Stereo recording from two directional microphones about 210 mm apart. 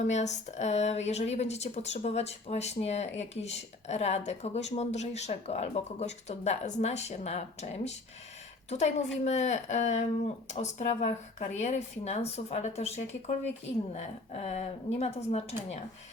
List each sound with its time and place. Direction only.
0.0 s speech: 35° left (ahead or behind)
9.2 s speech: 35° left (ahead or behind)